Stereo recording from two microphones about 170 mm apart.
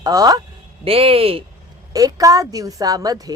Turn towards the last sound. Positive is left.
turn(degrees=-20)  # may be behind; listen again after turning